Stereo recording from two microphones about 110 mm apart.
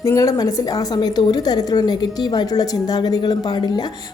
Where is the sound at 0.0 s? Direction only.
30° left (ahead or behind).